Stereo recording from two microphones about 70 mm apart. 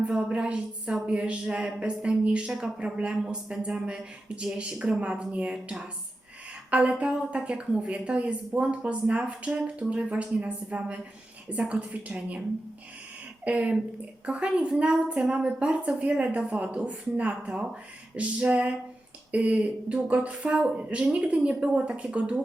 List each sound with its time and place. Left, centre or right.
0.0 s speech: centre
13.4 s speech: centre